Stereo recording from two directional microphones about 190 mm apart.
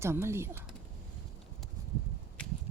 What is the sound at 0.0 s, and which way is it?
Speech, 15° right (ahead or behind).